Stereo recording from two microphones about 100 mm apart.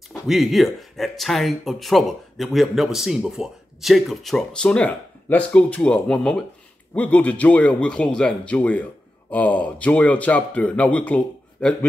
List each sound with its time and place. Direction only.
0.1 s a man's voice: centre (ahead or behind)